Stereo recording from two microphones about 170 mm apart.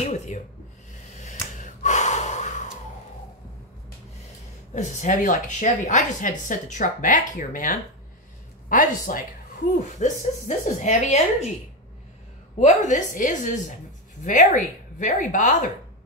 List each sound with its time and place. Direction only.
0.1 s speech: 45° left (ahead or behind)
1.2 s gasp: 45° left (ahead or behind)
4.7 s a woman's voice: 45° left (ahead or behind)
12.5 s a woman's voice: 45° left (ahead or behind)